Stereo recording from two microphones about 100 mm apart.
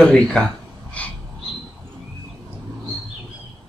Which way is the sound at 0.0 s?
5° left (ahead or behind).